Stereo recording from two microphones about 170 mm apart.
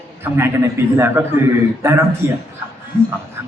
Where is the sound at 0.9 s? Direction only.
15° right (ahead or behind).